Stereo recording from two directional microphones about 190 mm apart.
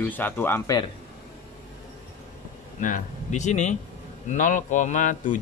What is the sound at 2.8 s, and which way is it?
A man's voice, 40° left (ahead or behind).